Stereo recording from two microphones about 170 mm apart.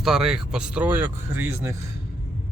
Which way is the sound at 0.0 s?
5° right (ahead or behind).